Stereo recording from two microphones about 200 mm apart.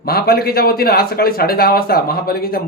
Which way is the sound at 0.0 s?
50° left (ahead or behind).